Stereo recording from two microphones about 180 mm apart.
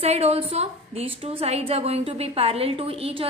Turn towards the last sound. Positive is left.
turn(degrees=-30)  # may be behind; listen again after turning